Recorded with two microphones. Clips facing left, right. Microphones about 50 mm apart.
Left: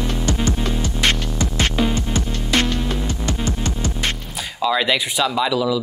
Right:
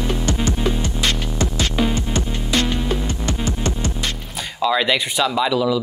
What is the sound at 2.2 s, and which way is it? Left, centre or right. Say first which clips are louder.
Music: even; centre.